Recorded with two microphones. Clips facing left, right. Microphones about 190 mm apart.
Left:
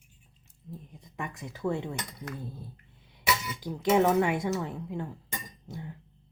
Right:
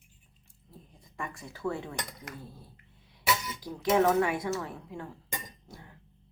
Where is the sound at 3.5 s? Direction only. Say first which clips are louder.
Left 2 dB; 20° left (ahead or behind).